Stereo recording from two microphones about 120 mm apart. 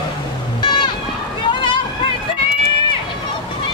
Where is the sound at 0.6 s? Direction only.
40° left (ahead or behind).